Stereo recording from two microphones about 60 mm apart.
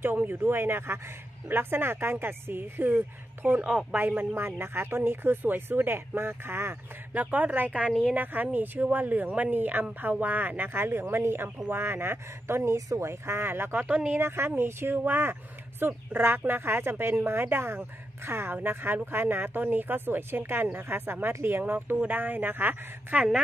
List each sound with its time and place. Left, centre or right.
0.0 s speech: right
3.4 s a woman's voice: centre
3.9 s speech: right
4.4 s speech: right
7.2 s speech: right
13.1 s speech: right
14.2 s speech: right